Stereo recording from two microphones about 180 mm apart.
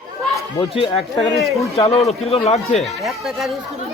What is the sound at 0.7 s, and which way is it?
Speech, 30° left (ahead or behind).